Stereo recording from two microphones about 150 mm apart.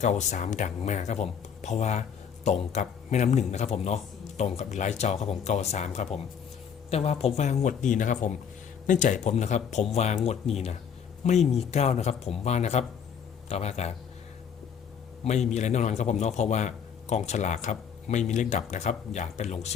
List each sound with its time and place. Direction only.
0.0 s speech: 50° left (ahead or behind)
15.2 s a man's voice: 50° left (ahead or behind)